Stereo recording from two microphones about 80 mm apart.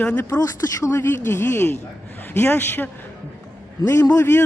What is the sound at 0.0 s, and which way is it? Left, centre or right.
Speech, centre.